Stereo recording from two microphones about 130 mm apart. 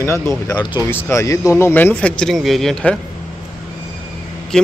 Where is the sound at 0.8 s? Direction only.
20° left (ahead or behind).